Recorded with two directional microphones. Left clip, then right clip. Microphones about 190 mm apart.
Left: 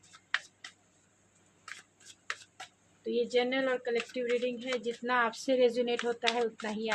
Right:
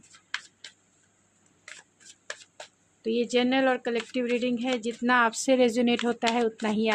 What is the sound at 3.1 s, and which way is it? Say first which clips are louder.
Speech: right 4 dB; 60° right (ahead or behind).